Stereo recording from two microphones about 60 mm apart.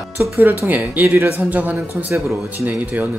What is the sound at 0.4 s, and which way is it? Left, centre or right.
Speech, right.